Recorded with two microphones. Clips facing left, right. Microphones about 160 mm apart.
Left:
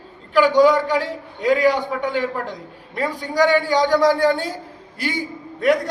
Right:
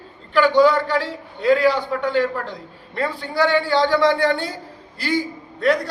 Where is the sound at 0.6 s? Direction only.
15° left (ahead or behind).